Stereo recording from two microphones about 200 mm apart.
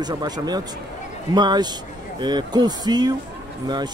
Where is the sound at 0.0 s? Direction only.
20° right (ahead or behind).